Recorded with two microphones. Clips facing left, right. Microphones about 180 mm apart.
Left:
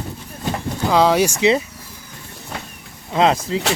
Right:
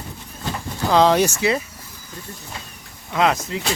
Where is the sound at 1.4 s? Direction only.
20° left (ahead or behind).